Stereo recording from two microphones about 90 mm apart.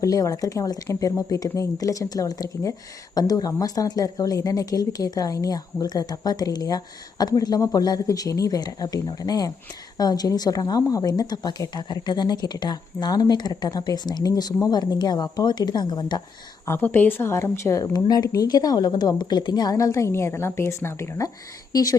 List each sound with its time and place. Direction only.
0.0 s a woman's voice: 40° left (ahead or behind)
16.6 s a woman's voice: 25° left (ahead or behind)
17.9 s a woman's voice: 50° left (ahead or behind); by 21.2 s 30° left (ahead or behind)
21.7 s speech: 40° left (ahead or behind)